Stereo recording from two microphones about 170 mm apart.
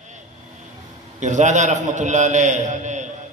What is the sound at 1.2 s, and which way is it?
A man's voice, 45° right (ahead or behind).